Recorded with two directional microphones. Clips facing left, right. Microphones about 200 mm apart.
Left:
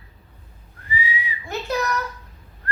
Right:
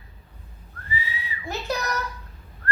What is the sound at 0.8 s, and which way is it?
Whistling, 15° left (ahead or behind).